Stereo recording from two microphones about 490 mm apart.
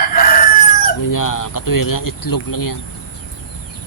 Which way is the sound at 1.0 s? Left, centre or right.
Left.